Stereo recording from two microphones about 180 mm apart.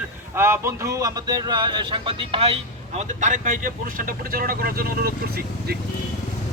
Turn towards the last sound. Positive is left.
turn(degrees=-60)  # may be behind; listen again after turning